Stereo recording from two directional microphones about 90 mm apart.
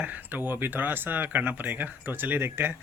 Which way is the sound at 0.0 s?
20° right (ahead or behind).